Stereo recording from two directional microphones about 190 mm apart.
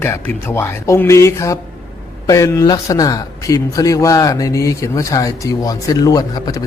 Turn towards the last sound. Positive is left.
turn(degrees=20)  # may be behind; listen again after turning